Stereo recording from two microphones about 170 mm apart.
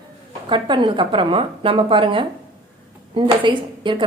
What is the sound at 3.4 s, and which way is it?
Speech, 30° right (ahead or behind).